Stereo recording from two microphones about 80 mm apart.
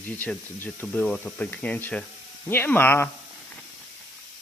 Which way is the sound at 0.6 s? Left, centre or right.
Left.